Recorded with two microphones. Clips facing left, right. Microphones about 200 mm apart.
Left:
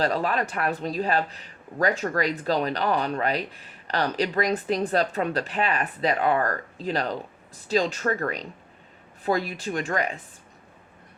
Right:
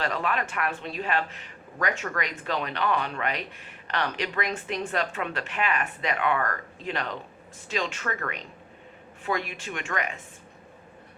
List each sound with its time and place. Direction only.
0.0 s speech: 35° left (ahead or behind)